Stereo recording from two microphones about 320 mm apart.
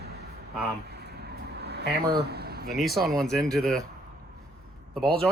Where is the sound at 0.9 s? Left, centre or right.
Right.